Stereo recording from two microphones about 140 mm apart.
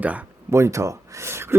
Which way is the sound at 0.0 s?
10° right (ahead or behind).